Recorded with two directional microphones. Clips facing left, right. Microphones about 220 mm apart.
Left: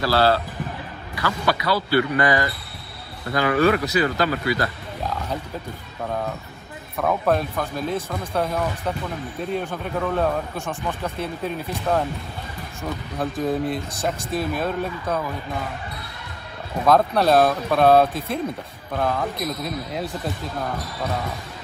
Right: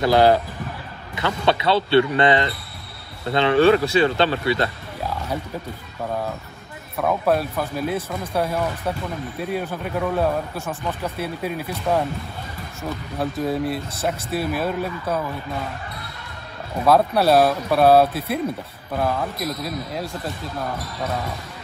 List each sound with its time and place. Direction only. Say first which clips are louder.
0.0 s a man's voice: right 4 dB; 15° right (ahead or behind)
7.0 s speech: right 1 dB; 5° right (ahead or behind)
13.2 s speech: even; centre (ahead or behind)
14.3 s speech: right 1 dB; 10° right (ahead or behind)
16.8 s speech: right 1 dB; 10° right (ahead or behind)